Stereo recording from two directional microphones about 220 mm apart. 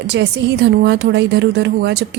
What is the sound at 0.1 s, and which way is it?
A woman's voice, 50° right (ahead or behind).